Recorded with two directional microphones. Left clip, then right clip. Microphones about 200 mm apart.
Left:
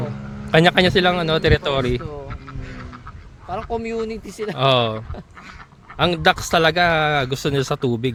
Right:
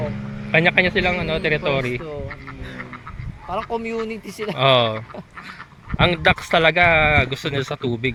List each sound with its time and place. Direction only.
0.5 s a man's voice: 55° left (ahead or behind)
3.7 s a man's voice: 60° left (ahead or behind)
4.5 s speech: 30° left (ahead or behind)